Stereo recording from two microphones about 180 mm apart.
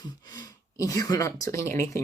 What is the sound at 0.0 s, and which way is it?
A woman's voice, 20° left (ahead or behind).